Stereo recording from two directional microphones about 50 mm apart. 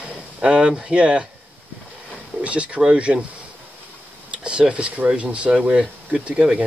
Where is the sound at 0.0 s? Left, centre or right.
Centre.